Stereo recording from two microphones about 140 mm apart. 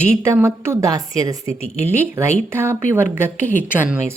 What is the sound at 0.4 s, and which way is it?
A woman's voice, 20° right (ahead or behind).